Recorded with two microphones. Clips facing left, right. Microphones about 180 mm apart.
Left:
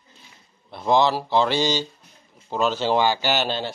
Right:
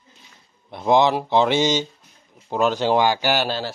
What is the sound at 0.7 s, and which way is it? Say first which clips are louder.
Speech: right 2 dB; 20° right (ahead or behind).